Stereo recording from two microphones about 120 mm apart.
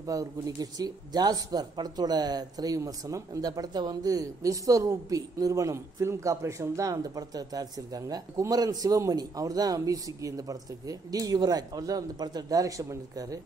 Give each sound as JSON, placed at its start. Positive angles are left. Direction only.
{"t": 0.0, "sound": "speech", "side_deg": -30}